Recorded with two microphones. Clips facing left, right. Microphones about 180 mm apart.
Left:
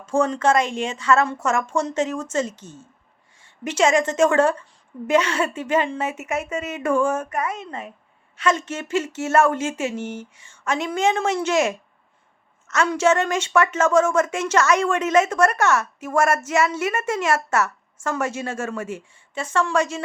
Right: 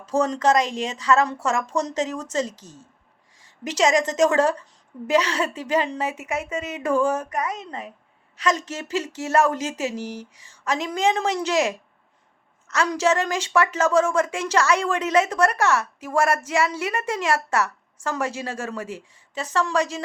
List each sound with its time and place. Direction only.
0.0 s a woman's voice: 40° right (ahead or behind)
12.6 s a sound: 35° right (ahead or behind)
13.0 s a woman's voice: 35° right (ahead or behind)